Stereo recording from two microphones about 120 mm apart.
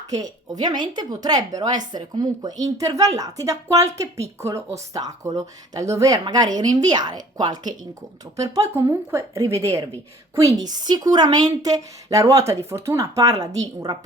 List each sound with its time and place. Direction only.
0.1 s a woman's voice: 35° right (ahead or behind)